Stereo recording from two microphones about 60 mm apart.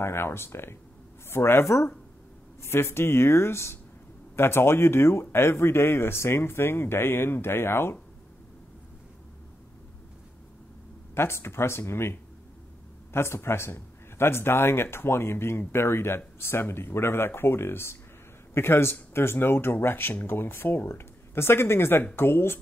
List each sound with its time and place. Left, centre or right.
0.0 s a man's voice: left
11.1 s a man's voice: left